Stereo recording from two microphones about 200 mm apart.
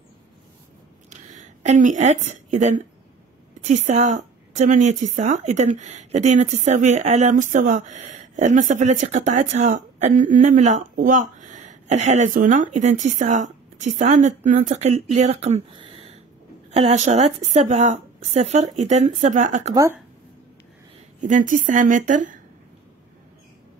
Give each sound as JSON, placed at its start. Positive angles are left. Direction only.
{"t": 1.1, "sound": "a sound", "side_deg": -35}
{"t": 3.6, "sound": "a woman's voice", "side_deg": -35}
{"t": 19.7, "sound": "speech", "side_deg": -15}
{"t": 21.2, "sound": "a woman's voice", "side_deg": -40}